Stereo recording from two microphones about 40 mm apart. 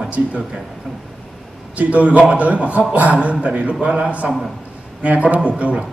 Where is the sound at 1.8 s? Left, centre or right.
Right.